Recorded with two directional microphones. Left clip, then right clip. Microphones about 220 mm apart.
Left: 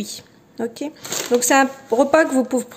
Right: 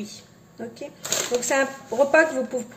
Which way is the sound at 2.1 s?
50° left (ahead or behind).